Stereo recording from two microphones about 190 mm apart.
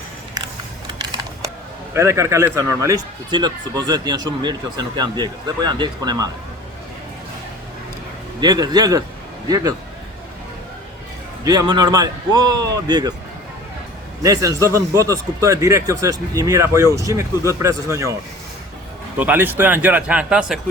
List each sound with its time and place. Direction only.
1.9 s a man's voice: 15° right (ahead or behind)
8.4 s a man's voice: 20° right (ahead or behind)
11.4 s a man's voice: 20° right (ahead or behind)
14.2 s a man's voice: 15° right (ahead or behind)
19.1 s a man's voice: 10° right (ahead or behind)